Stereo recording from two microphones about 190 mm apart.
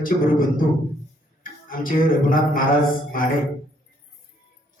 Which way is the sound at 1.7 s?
45° left (ahead or behind).